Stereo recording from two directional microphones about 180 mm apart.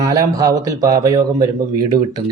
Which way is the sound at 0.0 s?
20° right (ahead or behind).